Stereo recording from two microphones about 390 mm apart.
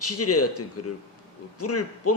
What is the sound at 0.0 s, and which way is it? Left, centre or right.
A man's voice, left.